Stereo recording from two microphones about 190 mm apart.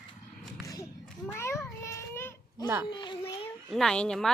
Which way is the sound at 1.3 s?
15° left (ahead or behind).